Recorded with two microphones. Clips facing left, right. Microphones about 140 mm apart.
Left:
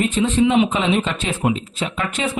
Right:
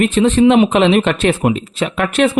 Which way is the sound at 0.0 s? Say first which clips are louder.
Right 6 dB; 80° right.